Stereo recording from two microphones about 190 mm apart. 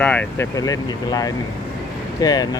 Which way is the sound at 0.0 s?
5° left (ahead or behind).